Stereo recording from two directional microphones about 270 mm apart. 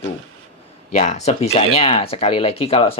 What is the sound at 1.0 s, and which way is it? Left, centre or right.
Speech, left.